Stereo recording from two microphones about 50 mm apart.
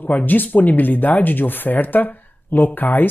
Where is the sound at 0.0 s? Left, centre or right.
Left.